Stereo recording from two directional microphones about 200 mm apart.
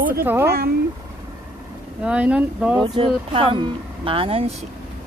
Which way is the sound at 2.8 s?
25° right (ahead or behind).